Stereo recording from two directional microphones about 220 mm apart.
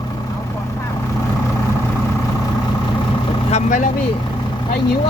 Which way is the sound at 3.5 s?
35° left (ahead or behind).